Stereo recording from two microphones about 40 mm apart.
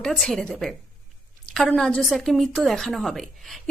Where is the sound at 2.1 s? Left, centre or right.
Centre.